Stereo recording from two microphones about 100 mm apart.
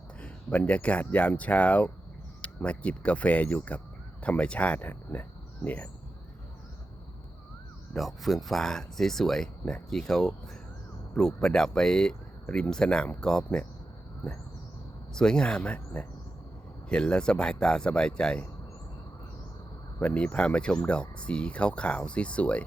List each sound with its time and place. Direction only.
0.2 s speech: 10° left (ahead or behind)
7.9 s speech: centre (ahead or behind)
15.1 s speech: 5° left (ahead or behind)
20.0 s speech: 10° left (ahead or behind)